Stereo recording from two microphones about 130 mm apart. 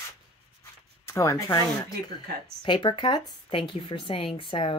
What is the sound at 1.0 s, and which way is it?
Speech, 25° left (ahead or behind).